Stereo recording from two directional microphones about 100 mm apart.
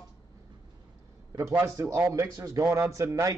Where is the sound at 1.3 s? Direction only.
30° right (ahead or behind).